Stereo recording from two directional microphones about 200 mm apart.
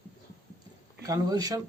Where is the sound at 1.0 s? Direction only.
20° right (ahead or behind).